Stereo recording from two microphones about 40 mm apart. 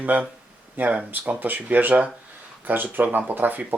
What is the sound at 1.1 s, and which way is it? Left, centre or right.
Speech, right.